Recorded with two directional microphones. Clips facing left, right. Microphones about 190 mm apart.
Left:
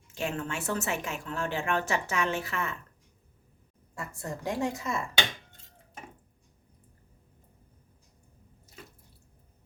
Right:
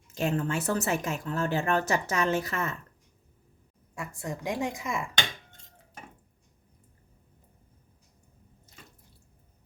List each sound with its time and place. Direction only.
0.1 s speech: 40° right (ahead or behind)
3.9 s a woman's voice: 15° right (ahead or behind)